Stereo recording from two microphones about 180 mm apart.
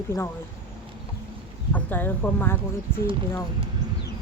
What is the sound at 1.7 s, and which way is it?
Speech, 10° left (ahead or behind).